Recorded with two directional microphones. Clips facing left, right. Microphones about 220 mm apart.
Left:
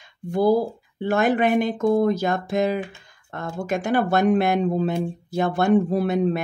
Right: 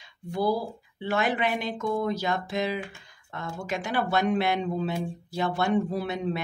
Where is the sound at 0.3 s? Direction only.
50° left (ahead or behind).